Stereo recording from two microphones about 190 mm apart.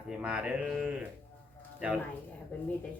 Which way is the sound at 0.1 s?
5° right (ahead or behind).